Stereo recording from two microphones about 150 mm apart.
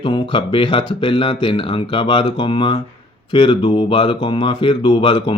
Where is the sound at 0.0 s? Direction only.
35° left (ahead or behind).